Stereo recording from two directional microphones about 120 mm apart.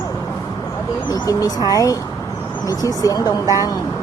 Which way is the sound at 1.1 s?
30° left (ahead or behind).